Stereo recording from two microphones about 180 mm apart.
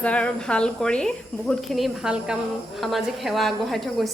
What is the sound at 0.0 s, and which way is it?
Speech, 5° left (ahead or behind).